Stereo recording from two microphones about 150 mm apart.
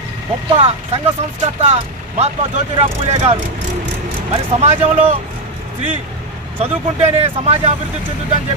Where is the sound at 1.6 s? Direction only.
45° right (ahead or behind).